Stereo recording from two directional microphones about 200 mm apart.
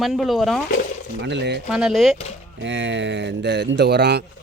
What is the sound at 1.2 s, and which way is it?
Speech, 60° right (ahead or behind).